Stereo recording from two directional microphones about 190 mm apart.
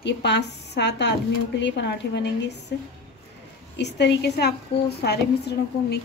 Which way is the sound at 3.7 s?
65° left (ahead or behind).